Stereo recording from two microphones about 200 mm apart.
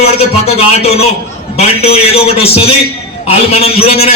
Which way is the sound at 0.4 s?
30° left (ahead or behind).